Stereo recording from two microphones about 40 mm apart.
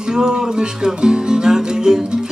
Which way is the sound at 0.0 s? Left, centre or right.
Centre.